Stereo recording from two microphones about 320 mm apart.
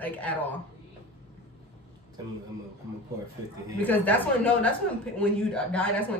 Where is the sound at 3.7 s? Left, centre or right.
Centre.